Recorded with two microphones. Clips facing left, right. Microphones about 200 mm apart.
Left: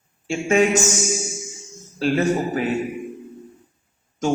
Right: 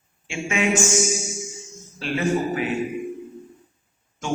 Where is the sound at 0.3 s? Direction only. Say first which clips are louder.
Left 5 dB; 40° left (ahead or behind).